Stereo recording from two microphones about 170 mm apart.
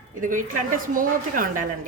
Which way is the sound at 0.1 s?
50° right (ahead or behind).